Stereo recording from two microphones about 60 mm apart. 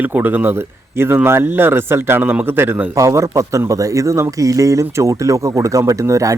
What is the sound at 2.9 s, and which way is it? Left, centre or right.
Speech, right.